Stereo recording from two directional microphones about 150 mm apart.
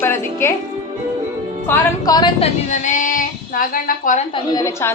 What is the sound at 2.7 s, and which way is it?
Speech, 55° left (ahead or behind).